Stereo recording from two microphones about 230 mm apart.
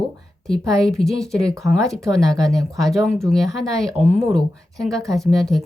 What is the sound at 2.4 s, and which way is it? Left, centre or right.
Speech, centre.